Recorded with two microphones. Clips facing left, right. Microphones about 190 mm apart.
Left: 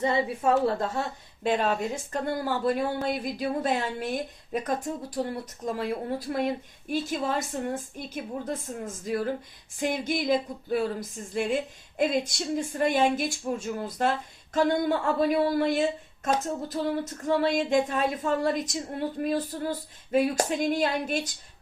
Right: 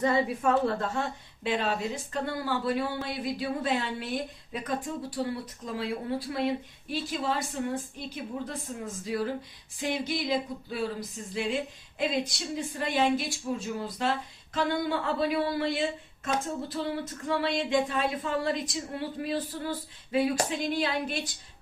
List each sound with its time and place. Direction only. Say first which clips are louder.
0.0 s a woman's voice: even; 30° left (ahead or behind); by 21.2 s 45° left (ahead or behind)